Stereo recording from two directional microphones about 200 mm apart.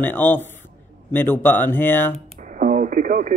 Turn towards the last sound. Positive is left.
turn(degrees=-40)  # may be behind; listen again after turning